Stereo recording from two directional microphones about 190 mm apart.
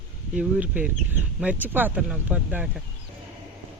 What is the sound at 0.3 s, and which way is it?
Speech, 5° right (ahead or behind).